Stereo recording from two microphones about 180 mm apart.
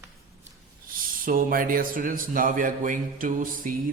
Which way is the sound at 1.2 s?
50° right (ahead or behind).